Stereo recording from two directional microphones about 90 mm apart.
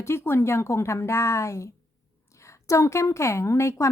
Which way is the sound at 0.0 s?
30° left (ahead or behind).